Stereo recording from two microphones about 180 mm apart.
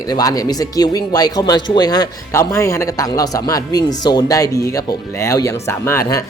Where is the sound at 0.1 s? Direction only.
20° left (ahead or behind).